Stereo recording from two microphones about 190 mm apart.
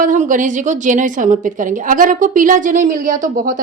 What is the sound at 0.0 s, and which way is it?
Speech, 45° right (ahead or behind).